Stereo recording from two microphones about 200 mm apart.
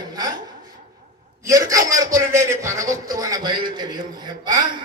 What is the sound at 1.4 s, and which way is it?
A man's voice, 15° right (ahead or behind).